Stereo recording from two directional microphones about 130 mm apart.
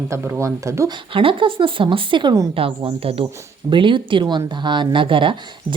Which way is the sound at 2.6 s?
45° right (ahead or behind).